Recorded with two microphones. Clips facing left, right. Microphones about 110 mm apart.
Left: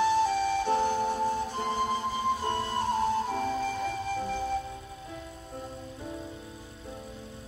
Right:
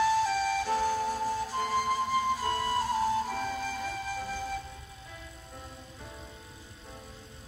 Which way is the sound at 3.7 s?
55° left (ahead or behind).